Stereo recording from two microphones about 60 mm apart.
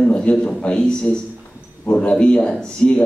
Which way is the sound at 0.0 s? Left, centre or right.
Centre.